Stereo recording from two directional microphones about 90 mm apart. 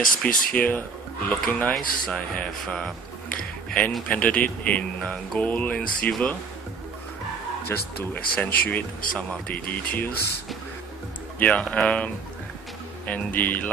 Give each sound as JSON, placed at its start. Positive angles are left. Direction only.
{"t": 0.2, "sound": "speech", "side_deg": 15}
{"t": 7.7, "sound": "speech", "side_deg": 20}
{"t": 11.3, "sound": "speech", "side_deg": 15}